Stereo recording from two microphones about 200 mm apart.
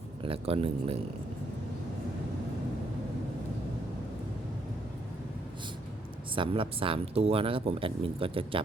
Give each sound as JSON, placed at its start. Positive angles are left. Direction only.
{"t": 0.3, "sound": "speech", "side_deg": -30}
{"t": 6.3, "sound": "speech", "side_deg": -25}